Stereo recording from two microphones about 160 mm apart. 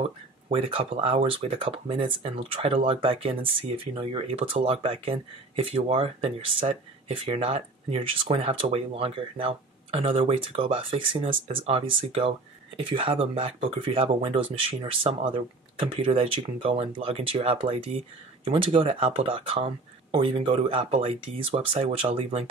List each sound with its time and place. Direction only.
0.0 s speech: 35° right (ahead or behind)